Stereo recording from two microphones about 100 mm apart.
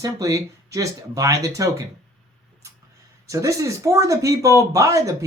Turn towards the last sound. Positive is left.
turn(degrees=-35)  # may be behind; listen again after turning